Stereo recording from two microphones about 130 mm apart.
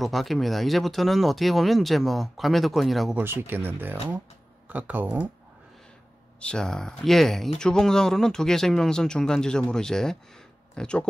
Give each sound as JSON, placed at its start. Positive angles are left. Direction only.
{"t": 0.0, "sound": "speech", "side_deg": 0}
{"t": 3.2, "sound": "speech", "side_deg": -15}
{"t": 6.4, "sound": "speech", "side_deg": 5}